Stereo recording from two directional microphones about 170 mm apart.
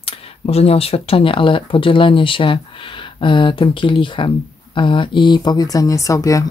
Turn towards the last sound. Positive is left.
turn(degrees=20)  # may be behind; listen again after turning